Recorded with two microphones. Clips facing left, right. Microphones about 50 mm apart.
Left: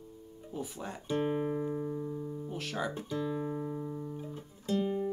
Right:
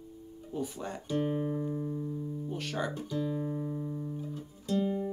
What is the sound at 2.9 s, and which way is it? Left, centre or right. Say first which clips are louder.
Speech: right 1 dB; left.